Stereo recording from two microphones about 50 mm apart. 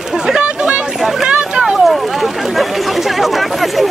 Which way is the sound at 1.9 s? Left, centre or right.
Centre.